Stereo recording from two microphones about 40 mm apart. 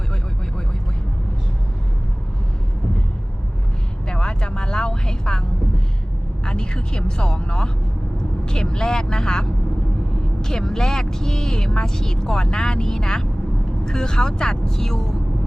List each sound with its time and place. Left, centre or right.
4.1 s vehicle: left
6.4 s speech: centre